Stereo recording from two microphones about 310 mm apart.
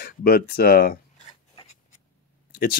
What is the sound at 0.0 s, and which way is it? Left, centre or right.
Speech, left.